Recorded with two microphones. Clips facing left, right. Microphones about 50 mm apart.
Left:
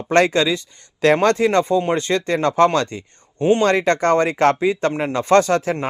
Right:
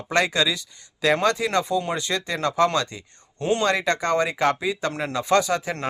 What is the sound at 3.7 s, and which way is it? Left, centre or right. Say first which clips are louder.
Speech: left 6 dB; left.